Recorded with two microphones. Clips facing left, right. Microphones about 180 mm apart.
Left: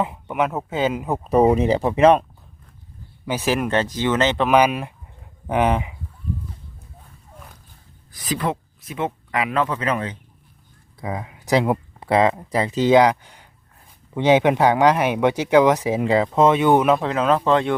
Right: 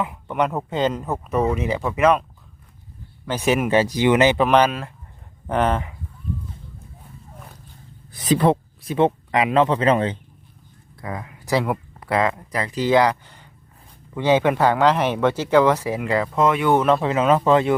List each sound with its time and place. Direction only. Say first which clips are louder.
0.3 s speech: right 4 dB; 5° left (ahead or behind)
1.2 s speech: left 7 dB; 35° left (ahead or behind)
3.2 s speech: right 1 dB; 5° left (ahead or behind)
4.4 s speech: even; 10° left (ahead or behind)
8.2 s speech: right 7 dB; 30° right (ahead or behind)
11.0 s speech: left 3 dB; 20° left (ahead or behind)
17.0 s speech: right 1 dB; 5° right (ahead or behind)